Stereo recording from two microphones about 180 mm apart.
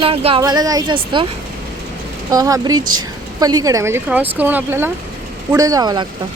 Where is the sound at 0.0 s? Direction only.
30° right (ahead or behind).